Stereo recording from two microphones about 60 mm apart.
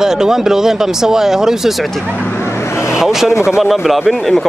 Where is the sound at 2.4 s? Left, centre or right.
Left.